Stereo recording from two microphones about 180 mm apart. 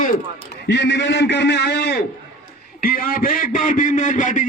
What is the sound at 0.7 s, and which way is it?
A man's voice, 75° left (ahead or behind).